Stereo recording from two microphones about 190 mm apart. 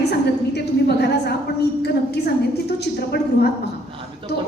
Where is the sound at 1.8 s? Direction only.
60° left (ahead or behind).